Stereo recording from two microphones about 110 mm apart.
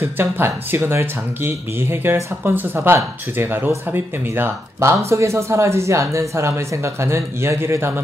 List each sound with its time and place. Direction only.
0.0 s speech: 20° right (ahead or behind)